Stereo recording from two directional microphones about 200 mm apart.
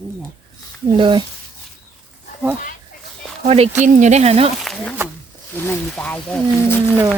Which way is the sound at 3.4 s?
30° right (ahead or behind).